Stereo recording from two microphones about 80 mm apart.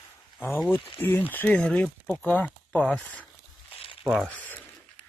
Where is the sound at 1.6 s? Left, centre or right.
Centre.